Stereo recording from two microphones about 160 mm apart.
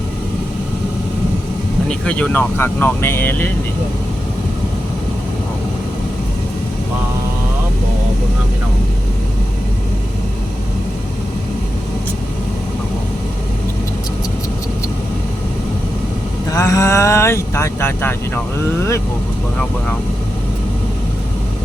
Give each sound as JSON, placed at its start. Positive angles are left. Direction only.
{"t": 2.0, "sound": "speech", "side_deg": 5}
{"t": 16.5, "sound": "speech", "side_deg": 20}